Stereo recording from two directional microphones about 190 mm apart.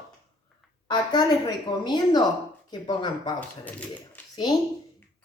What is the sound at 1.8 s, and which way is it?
Speech, 20° left (ahead or behind).